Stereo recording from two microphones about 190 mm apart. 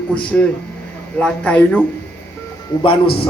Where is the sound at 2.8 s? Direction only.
25° left (ahead or behind).